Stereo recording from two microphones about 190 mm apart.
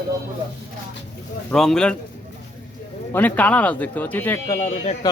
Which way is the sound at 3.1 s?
10° left (ahead or behind).